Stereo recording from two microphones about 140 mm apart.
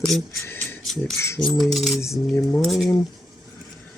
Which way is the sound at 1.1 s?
20° left (ahead or behind).